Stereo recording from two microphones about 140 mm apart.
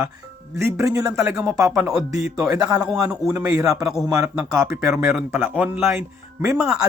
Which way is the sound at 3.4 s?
25° right (ahead or behind).